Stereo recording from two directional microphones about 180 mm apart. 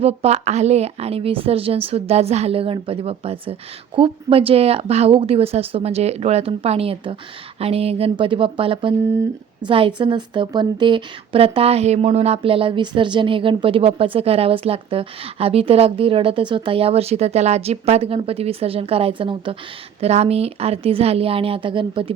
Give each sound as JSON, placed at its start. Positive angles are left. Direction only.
{"t": 0.0, "sound": "a woman's voice", "side_deg": -35}